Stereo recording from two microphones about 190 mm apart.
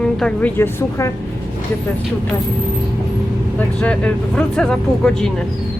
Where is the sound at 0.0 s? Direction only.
5° left (ahead or behind).